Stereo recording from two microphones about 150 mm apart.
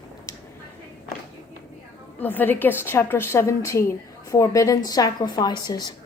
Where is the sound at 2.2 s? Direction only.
10° left (ahead or behind).